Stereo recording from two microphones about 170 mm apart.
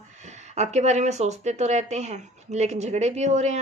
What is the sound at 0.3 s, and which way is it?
A woman's voice, 40° right (ahead or behind).